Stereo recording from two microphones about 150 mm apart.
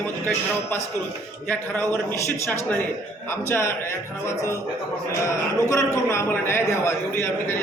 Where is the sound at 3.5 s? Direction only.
15° left (ahead or behind).